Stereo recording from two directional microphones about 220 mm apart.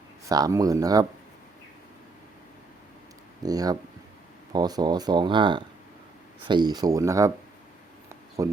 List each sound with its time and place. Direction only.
0.3 s speech: 15° right (ahead or behind)
3.4 s speech: 15° right (ahead or behind)
8.4 s speech: 15° right (ahead or behind)